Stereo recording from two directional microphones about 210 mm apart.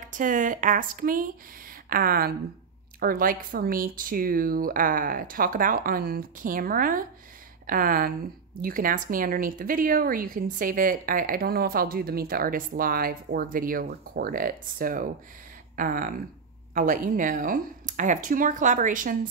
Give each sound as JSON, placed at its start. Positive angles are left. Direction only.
{"t": 0.1, "sound": "speech", "side_deg": -40}